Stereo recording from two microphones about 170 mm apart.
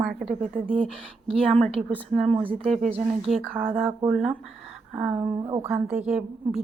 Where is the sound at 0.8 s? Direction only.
35° right (ahead or behind).